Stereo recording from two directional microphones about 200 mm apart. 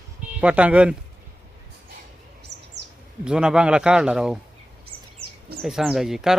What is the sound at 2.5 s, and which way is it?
Chirp, 60° right (ahead or behind).